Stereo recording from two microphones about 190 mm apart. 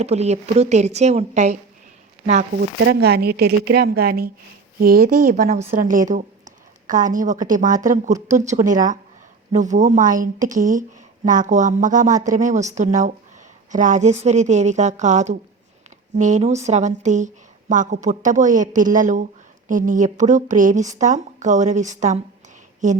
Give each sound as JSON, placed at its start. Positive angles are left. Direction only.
{"t": 0.0, "sound": "a woman's voice", "side_deg": -35}
{"t": 2.6, "sound": "a woman's voice", "side_deg": -55}